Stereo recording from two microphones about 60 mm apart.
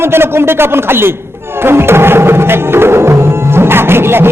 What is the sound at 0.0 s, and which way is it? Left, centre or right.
A man's voice, right.